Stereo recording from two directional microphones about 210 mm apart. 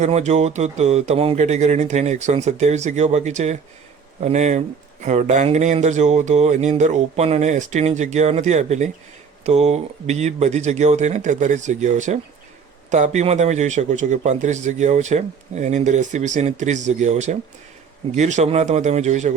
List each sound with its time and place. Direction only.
0.0 s speech: 30° right (ahead or behind)